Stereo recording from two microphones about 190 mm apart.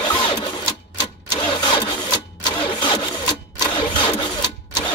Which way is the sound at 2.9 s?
25° left (ahead or behind).